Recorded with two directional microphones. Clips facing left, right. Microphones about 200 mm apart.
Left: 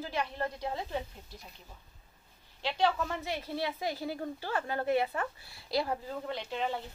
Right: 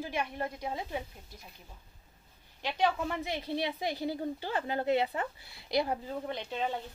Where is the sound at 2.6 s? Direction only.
15° right (ahead or behind).